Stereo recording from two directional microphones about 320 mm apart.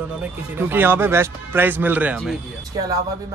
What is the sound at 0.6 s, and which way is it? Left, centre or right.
Speech, centre.